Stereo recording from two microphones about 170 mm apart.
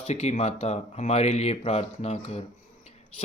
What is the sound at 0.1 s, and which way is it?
Speech, 40° left (ahead or behind).